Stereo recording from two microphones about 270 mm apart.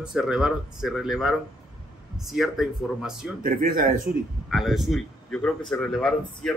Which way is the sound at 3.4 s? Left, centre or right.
Right.